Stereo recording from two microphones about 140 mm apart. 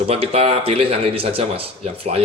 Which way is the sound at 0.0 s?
45° right (ahead or behind).